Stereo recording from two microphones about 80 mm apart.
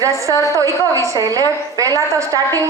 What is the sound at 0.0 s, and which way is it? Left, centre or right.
A woman's voice, right.